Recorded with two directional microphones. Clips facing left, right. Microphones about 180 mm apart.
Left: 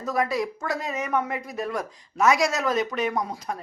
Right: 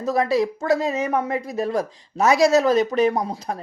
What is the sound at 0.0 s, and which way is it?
Speech, 30° right (ahead or behind).